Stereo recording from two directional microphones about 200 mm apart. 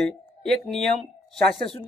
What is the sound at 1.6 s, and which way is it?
Speech, 30° left (ahead or behind).